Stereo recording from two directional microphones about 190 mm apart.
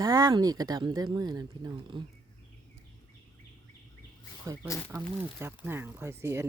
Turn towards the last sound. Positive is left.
turn(degrees=-15)  # may be behind; listen again after turning